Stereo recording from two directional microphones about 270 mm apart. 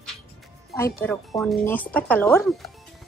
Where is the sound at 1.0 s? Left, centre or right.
Centre.